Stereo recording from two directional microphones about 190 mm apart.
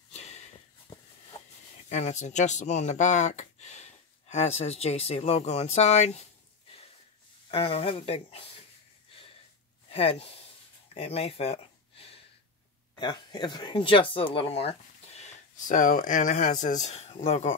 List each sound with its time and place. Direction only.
0.1 s a sound: 35° left (ahead or behind)
1.9 s speech: 40° left (ahead or behind)
7.5 s speech: 30° left (ahead or behind)
9.8 s speech: 30° left (ahead or behind)